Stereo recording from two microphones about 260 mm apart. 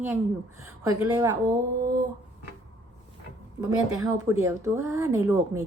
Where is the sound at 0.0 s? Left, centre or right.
Centre.